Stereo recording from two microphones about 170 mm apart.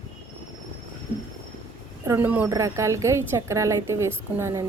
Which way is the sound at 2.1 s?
10° right (ahead or behind).